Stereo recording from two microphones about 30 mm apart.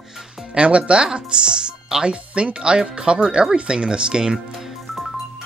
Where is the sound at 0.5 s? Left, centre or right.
Right.